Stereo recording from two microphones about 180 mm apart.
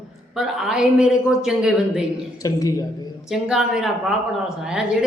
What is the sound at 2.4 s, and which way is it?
Speech, 20° left (ahead or behind).